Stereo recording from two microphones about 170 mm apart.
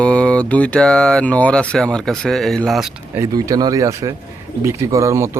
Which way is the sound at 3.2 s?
20° right (ahead or behind).